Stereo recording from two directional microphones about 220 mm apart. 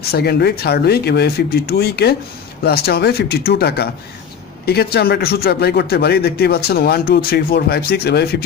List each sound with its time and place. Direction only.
0.0 s speech: 45° left (ahead or behind)